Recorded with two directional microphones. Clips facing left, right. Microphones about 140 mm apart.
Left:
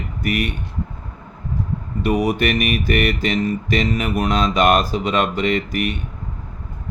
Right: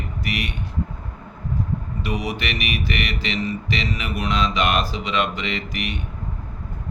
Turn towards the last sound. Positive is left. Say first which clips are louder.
# left 8 dB
turn(degrees=45)  # may be behind; listen again after turning